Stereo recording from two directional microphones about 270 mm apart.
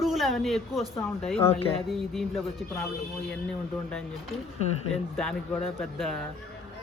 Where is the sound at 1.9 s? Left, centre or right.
Centre.